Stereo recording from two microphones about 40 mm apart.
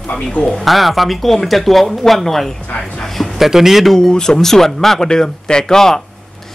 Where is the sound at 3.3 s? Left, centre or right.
Centre.